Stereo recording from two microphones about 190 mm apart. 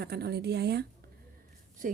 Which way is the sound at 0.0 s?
60° right (ahead or behind).